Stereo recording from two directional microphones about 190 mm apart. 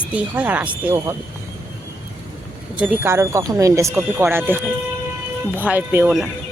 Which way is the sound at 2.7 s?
10° right (ahead or behind).